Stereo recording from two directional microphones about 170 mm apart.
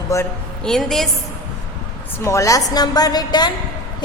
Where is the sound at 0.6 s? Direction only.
Centre (ahead or behind).